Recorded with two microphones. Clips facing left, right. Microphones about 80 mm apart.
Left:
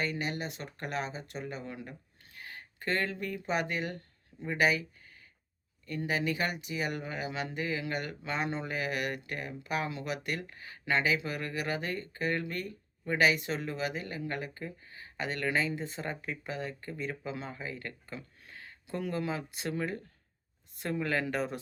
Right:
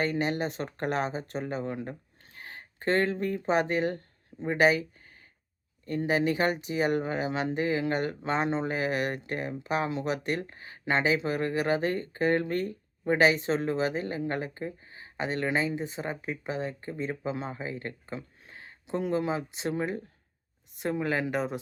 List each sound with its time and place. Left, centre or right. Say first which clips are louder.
0.0 s speech: right 6 dB; right; by 21.6 s centre